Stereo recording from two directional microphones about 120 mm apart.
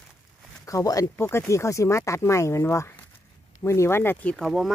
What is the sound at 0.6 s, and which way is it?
Speech, 30° left (ahead or behind).